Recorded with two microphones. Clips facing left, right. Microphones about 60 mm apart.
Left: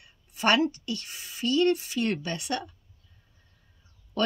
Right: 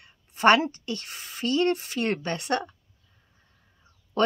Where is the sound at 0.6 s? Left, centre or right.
Right.